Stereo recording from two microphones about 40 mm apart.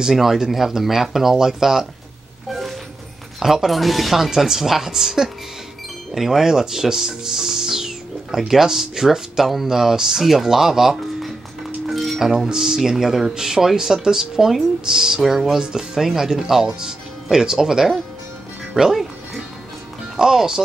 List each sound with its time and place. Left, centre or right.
0.1 s speech: centre
3.3 s speech: centre
12.4 s speech: centre
20.2 s speech: centre